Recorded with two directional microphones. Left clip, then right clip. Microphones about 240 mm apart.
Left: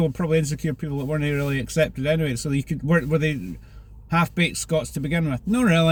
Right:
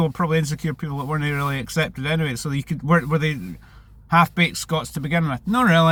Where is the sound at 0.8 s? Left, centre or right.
Right.